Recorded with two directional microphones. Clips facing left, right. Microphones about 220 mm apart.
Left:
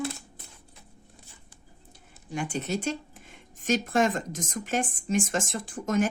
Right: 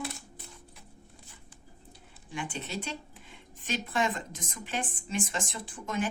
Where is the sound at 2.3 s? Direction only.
40° left (ahead or behind).